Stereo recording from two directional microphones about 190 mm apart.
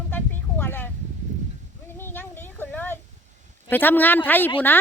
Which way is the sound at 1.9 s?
10° left (ahead or behind).